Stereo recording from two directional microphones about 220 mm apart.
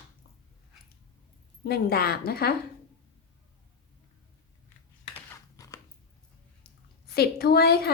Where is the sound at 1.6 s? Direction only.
45° left (ahead or behind).